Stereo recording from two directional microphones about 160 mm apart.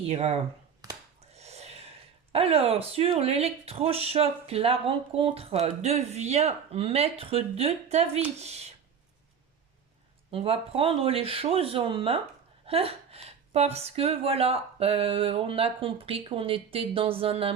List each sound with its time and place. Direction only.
0.1 s speech: 40° right (ahead or behind)
0.8 s finger snapping: 20° right (ahead or behind)
1.3 s speech: 40° right (ahead or behind)
10.3 s speech: 35° right (ahead or behind)